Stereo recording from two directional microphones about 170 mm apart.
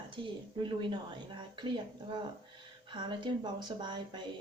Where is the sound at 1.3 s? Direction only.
25° right (ahead or behind).